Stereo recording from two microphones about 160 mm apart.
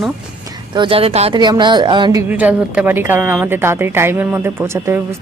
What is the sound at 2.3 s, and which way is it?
A woman's voice, 10° right (ahead or behind).